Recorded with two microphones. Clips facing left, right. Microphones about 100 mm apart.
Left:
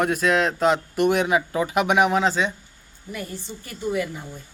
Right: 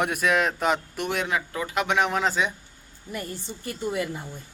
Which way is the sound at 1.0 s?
15° left (ahead or behind).